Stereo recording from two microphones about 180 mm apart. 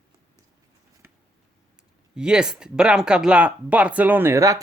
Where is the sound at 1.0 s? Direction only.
15° right (ahead or behind).